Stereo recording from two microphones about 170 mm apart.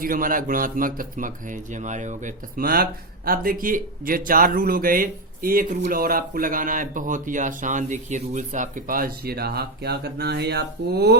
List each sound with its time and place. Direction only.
0.0 s speech: 55° right (ahead or behind); by 11.2 s 70° right (ahead or behind)